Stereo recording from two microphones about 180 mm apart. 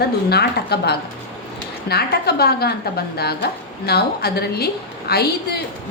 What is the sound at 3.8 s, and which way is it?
A woman's voice, 60° left (ahead or behind).